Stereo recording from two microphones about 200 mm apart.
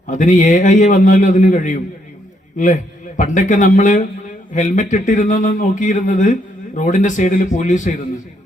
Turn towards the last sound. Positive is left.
turn(degrees=40)  # may be behind; listen again after turning